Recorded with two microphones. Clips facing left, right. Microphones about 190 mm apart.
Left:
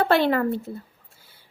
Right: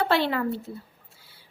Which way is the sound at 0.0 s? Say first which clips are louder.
Left 4 dB; 50° left (ahead or behind).